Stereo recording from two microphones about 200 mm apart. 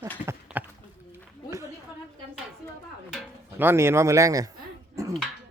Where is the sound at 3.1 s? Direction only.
10° right (ahead or behind).